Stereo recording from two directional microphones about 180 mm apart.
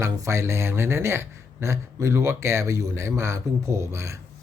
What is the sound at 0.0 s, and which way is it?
Speech, 15° right (ahead or behind).